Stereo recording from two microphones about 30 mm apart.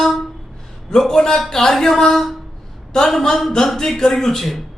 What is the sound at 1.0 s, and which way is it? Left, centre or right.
A man's voice, centre.